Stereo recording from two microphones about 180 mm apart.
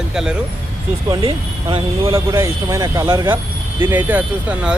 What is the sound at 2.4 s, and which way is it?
Speech, 15° right (ahead or behind).